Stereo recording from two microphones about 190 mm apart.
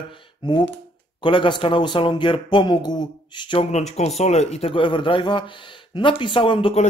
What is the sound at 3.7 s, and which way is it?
A man's voice, 35° left (ahead or behind).